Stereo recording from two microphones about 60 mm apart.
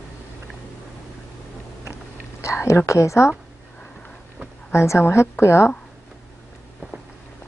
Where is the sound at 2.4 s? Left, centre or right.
Left.